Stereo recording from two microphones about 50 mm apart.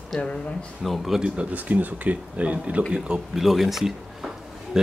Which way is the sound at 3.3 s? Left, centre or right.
Centre.